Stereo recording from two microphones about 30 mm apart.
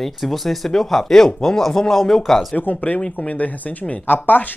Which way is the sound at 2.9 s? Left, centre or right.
Left.